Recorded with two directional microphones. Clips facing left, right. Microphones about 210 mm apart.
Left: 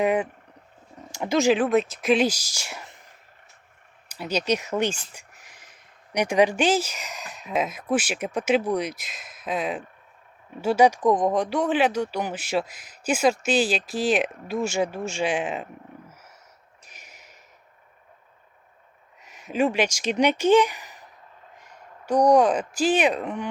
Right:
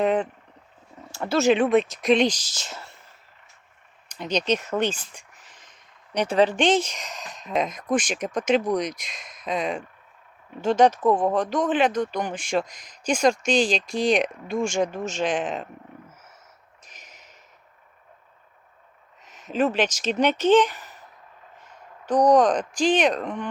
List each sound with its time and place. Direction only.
0.0 s speech: 10° left (ahead or behind)
1.5 s speech: centre (ahead or behind)
16.8 s a sound: 10° left (ahead or behind)
19.2 s speech: 10° left (ahead or behind)